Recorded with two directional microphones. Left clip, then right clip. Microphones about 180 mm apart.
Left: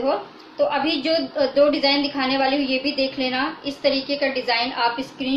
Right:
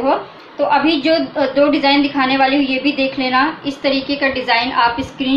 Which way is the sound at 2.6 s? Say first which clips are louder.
Right 5 dB; 45° right (ahead or behind).